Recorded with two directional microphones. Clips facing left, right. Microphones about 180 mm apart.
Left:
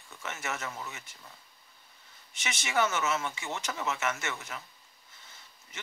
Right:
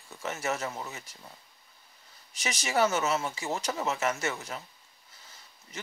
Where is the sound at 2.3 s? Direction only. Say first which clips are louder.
Right 3 dB; 35° right (ahead or behind).